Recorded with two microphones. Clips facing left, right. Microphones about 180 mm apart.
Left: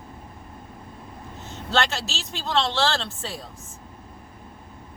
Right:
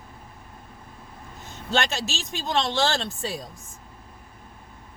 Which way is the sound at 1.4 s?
15° right (ahead or behind).